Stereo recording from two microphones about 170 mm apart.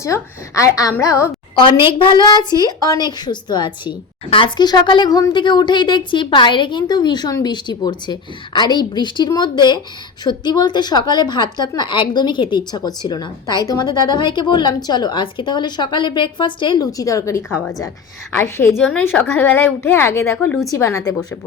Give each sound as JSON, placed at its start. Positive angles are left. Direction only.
{"t": 0.1, "sound": "a woman's voice", "side_deg": 15}
{"t": 1.5, "sound": "a woman's voice", "side_deg": 30}